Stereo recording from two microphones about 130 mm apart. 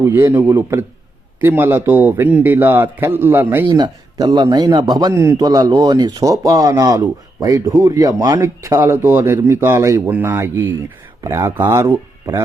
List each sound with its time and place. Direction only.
0.0 s a man's voice: 20° right (ahead or behind)
3.7 s a man's voice: 30° right (ahead or behind)
5.4 s speech: 30° right (ahead or behind)